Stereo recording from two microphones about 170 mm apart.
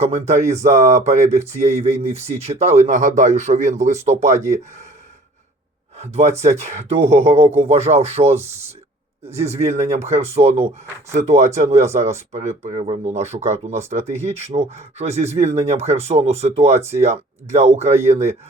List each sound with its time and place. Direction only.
0.0 s speech: 40° right (ahead or behind)
6.0 s speech: 40° right (ahead or behind)